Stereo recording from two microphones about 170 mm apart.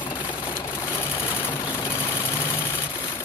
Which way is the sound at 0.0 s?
25° left (ahead or behind).